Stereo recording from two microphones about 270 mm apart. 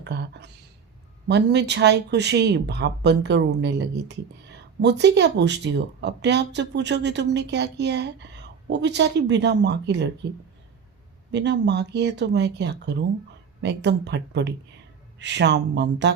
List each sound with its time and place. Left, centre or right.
0.0 s a sound: right
1.3 s speech: right
11.3 s speech: right